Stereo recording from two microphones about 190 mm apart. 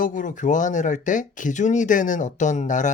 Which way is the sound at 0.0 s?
45° left (ahead or behind).